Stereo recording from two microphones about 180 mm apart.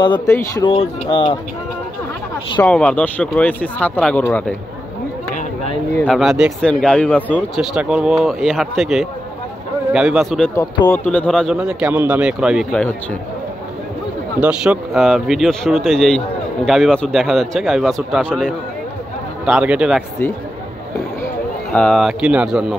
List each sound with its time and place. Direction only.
0.7 s speech: 30° left (ahead or behind)
2.6 s speech: 5° left (ahead or behind)
6.0 s speech: centre (ahead or behind)
7.6 s speech: 5° right (ahead or behind)
10.5 s speech: 20° left (ahead or behind)
11.1 s speech: 5° left (ahead or behind)
11.5 s speech: 5° right (ahead or behind)
14.4 s speech: 5° right (ahead or behind)
21.7 s speech: 5° left (ahead or behind)